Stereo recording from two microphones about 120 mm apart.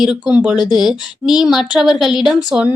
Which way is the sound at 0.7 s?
5° right (ahead or behind).